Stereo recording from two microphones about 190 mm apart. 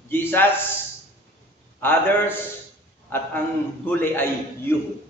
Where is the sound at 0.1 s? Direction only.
10° left (ahead or behind).